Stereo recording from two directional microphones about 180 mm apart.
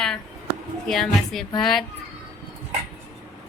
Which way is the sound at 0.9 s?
Centre (ahead or behind).